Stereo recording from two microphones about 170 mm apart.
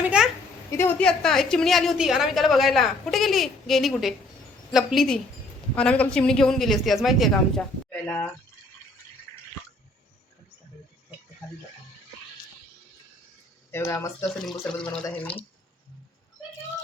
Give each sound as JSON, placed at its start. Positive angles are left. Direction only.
{"t": 0.0, "sound": "a sound", "side_deg": -5}
{"t": 0.8, "sound": "a woman's voice", "side_deg": 10}
{"t": 13.7, "sound": "speech", "side_deg": 15}
{"t": 14.6, "sound": "a woman's voice", "side_deg": 5}